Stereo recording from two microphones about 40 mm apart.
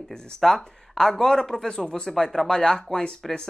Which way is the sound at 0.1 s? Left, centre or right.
Centre.